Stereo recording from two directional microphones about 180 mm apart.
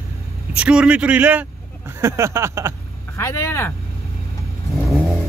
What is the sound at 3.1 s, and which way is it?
Speech, 15° left (ahead or behind).